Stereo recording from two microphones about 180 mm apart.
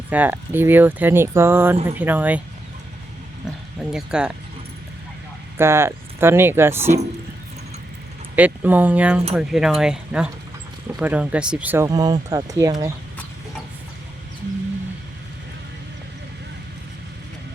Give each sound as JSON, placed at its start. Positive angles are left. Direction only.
{"t": 0.1, "sound": "speech", "side_deg": -10}
{"t": 3.8, "sound": "speech", "side_deg": -5}
{"t": 5.5, "sound": "speech", "side_deg": -15}
{"t": 8.4, "sound": "speech", "side_deg": -10}